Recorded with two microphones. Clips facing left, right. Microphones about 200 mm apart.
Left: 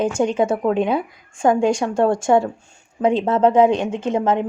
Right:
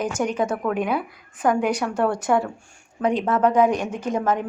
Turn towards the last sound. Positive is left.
turn(degrees=25)  # may be behind; listen again after turning